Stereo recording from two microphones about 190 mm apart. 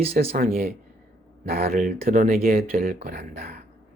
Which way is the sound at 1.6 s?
35° right (ahead or behind).